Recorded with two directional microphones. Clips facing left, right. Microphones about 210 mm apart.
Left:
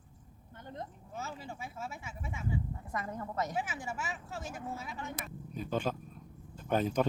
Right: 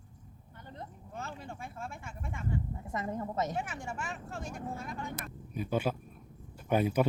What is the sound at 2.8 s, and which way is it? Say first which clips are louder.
Speech: right 3 dB; 25° right (ahead or behind).